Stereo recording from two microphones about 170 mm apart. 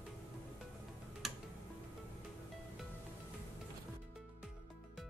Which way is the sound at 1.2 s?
Centre (ahead or behind).